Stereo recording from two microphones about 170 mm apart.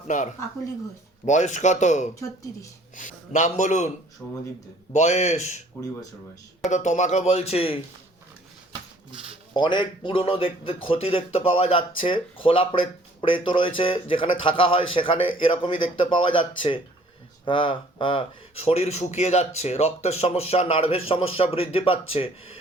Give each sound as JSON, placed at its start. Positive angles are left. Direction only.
{"t": 0.1, "sound": "speech", "side_deg": 45}
{"t": 4.2, "sound": "speech", "side_deg": 5}
{"t": 4.9, "sound": "speech", "side_deg": 45}
{"t": 6.7, "sound": "speech", "side_deg": 45}
{"t": 9.1, "sound": "a sound", "side_deg": -35}
{"t": 9.6, "sound": "speech", "side_deg": 30}